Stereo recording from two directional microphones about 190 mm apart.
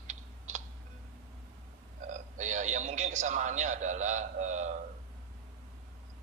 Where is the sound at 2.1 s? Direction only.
40° right (ahead or behind).